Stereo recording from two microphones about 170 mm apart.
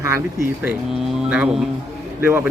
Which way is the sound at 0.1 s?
15° right (ahead or behind).